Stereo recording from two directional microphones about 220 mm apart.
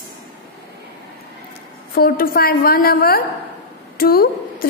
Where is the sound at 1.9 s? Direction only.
40° left (ahead or behind).